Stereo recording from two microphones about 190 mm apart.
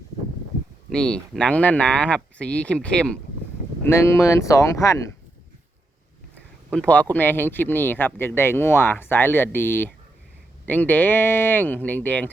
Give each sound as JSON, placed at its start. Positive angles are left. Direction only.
{"t": 0.9, "sound": "speech", "side_deg": 5}
{"t": 6.7, "sound": "speech", "side_deg": 5}